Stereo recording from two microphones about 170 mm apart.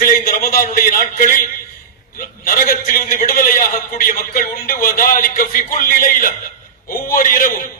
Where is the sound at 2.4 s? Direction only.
55° left (ahead or behind).